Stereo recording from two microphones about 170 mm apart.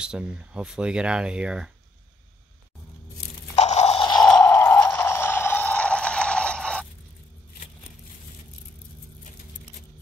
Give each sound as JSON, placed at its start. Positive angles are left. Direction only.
{"t": 0.0, "sound": "speech", "side_deg": -5}
{"t": 3.5, "sound": "crunch", "side_deg": 40}
{"t": 4.2, "sound": "a sound", "side_deg": 5}